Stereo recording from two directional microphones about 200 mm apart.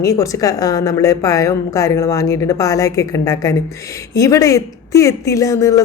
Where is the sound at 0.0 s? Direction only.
15° left (ahead or behind).